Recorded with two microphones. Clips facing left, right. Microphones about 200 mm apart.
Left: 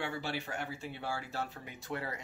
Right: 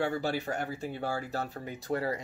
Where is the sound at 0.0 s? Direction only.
40° right (ahead or behind).